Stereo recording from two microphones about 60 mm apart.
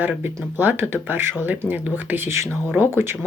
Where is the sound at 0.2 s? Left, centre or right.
Right.